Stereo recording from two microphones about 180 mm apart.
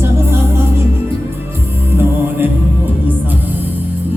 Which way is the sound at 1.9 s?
10° right (ahead or behind).